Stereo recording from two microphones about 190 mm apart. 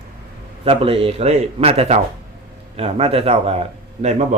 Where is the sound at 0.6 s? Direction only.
30° right (ahead or behind).